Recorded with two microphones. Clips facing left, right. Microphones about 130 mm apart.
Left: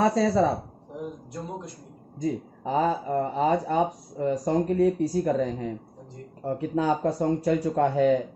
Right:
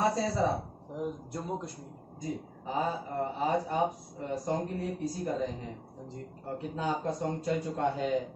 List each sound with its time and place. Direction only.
0.0 s speech: 90° left
2.1 s speech: 90° left; by 8.2 s 70° left (ahead or behind)